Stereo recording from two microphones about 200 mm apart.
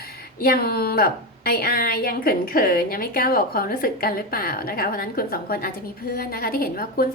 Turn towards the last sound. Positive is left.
turn(degrees=45)  # may be behind; listen again after turning